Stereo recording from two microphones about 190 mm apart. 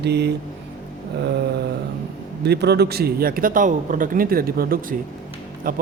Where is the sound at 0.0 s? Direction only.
60° right (ahead or behind).